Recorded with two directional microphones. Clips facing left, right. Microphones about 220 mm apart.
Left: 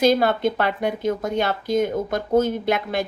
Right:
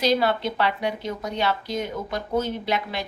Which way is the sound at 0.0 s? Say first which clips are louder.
Left 4 dB; 50° left (ahead or behind).